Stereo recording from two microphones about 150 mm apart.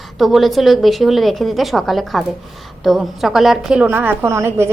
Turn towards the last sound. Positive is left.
turn(degrees=-20)  # may be behind; listen again after turning